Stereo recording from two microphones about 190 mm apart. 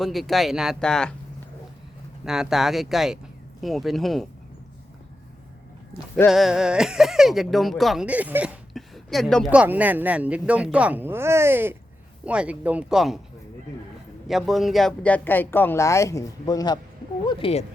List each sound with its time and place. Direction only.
0.0 s speech: centre (ahead or behind)
2.2 s speech: 5° right (ahead or behind)
6.2 s speech: centre (ahead or behind)
14.3 s speech: centre (ahead or behind); by 16.8 s 20° left (ahead or behind)
17.2 s speech: 30° left (ahead or behind)